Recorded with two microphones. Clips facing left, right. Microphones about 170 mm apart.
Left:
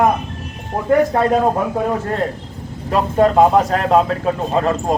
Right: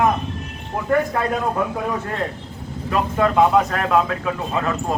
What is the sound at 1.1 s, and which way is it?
Speech, 30° left (ahead or behind).